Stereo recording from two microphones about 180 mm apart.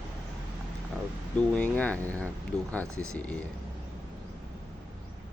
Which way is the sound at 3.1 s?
5° left (ahead or behind).